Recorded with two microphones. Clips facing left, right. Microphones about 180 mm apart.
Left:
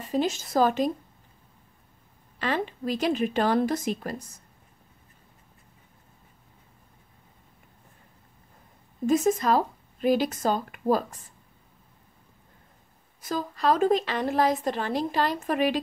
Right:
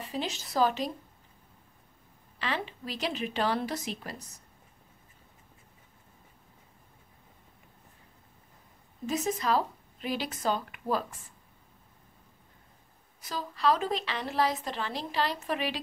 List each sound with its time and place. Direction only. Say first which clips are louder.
0.0 s a woman's voice: left 8 dB; 45° left (ahead or behind)
2.3 s a woman's voice: left 6 dB; 45° left (ahead or behind)
9.0 s a woman's voice: left 8 dB; 50° left (ahead or behind)
13.2 s a woman's voice: left 3 dB; 45° left (ahead or behind)